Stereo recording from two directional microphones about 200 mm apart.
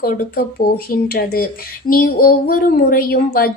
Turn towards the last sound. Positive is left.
turn(degrees=50)  # may be behind; listen again after turning